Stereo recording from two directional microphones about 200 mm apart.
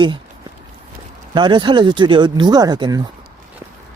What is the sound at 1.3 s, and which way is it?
Speech, 20° right (ahead or behind).